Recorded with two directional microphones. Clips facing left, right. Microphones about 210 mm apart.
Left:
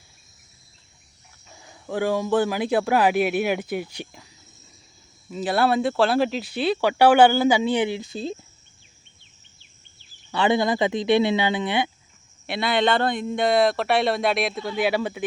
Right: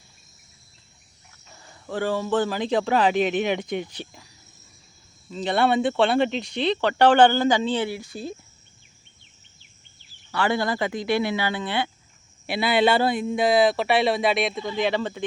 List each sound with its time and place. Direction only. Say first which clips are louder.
1.5 s speech: left 2 dB; 10° left (ahead or behind)
5.3 s speech: even; 5° left (ahead or behind); by 8.4 s 25° left (ahead or behind)
10.3 s speech: left 3 dB; 20° left (ahead or behind)
12.5 s a man's voice: right 1 dB; 5° right (ahead or behind)